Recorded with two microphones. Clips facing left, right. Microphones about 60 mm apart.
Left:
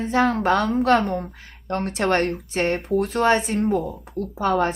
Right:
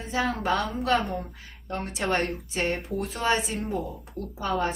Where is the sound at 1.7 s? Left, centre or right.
Left.